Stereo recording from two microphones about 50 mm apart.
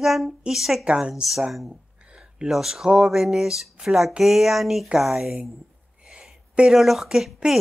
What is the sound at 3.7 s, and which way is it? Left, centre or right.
Speech, centre.